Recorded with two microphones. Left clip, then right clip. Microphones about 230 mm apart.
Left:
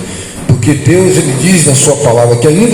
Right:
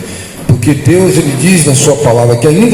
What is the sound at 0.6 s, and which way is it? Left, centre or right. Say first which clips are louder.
A man's voice: even; right.